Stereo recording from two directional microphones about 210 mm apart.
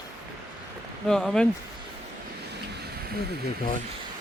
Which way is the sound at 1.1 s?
Centre (ahead or behind).